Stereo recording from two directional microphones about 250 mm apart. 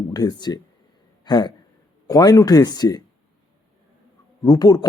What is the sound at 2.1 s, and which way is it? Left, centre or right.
Speech, centre.